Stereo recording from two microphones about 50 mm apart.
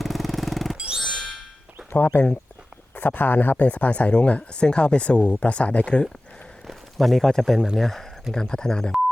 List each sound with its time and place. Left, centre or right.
0.0 s a sound: centre
1.9 s speech: left
6.7 s speech: centre